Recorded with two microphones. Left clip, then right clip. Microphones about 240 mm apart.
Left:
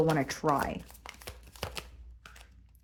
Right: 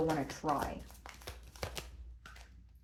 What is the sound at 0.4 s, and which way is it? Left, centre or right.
Speech, left.